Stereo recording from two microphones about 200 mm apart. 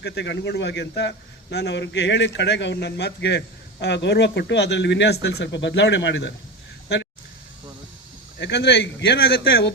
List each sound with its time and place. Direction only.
0.0 s a man's voice: 55° left (ahead or behind)
6.8 s a sound: 55° left (ahead or behind)
8.4 s a man's voice: 60° left (ahead or behind)